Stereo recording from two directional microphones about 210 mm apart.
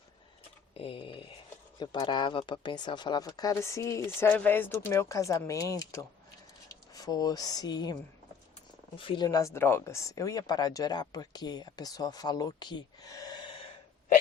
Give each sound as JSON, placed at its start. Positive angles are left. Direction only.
{"t": 0.7, "sound": "a sound", "side_deg": 25}
{"t": 1.8, "sound": "speech", "side_deg": 20}
{"t": 9.0, "sound": "speech", "side_deg": 25}